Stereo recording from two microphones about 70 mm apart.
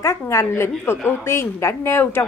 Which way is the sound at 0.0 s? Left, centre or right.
Left.